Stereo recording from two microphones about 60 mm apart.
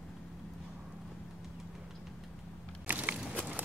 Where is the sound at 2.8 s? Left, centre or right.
Right.